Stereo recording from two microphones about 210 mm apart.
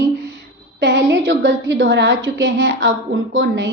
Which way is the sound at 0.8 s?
60° right (ahead or behind).